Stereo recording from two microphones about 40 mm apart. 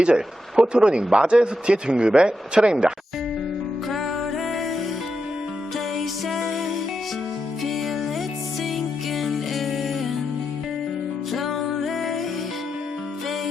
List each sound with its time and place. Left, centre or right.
0.0 s speech: right
6.0 s music: centre
9.1 s music: centre
11.3 s music: centre